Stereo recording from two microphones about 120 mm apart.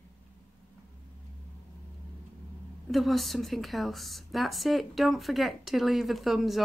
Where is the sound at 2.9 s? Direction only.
Centre (ahead or behind).